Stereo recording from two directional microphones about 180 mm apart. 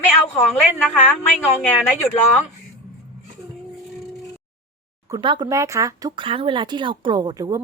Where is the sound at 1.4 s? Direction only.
10° left (ahead or behind).